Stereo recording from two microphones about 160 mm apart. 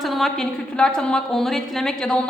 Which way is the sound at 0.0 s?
Centre (ahead or behind).